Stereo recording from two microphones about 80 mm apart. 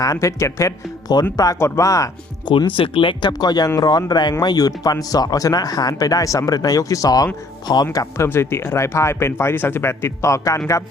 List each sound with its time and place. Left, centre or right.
0.0 s speech: left
2.5 s speech: left
4.4 s speech: left
7.7 s speech: left
8.2 s speech: left